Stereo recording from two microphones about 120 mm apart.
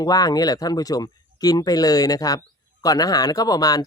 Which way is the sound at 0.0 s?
30° left (ahead or behind).